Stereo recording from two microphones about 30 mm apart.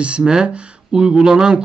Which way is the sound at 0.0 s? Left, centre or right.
Right.